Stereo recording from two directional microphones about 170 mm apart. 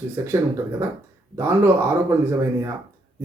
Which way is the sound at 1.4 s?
15° right (ahead or behind).